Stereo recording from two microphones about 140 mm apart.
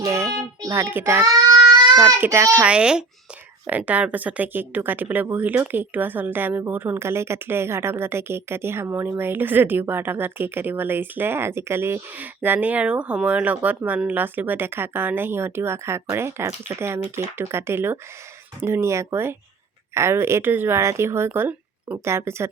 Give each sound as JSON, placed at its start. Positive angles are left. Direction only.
{"t": 0.0, "sound": "a child's voice", "side_deg": -20}